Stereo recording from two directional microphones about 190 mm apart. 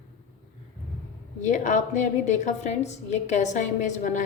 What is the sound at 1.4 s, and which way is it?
A woman's voice, 40° left (ahead or behind).